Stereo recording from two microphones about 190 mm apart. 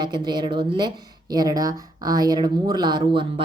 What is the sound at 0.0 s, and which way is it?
Speech, 20° right (ahead or behind).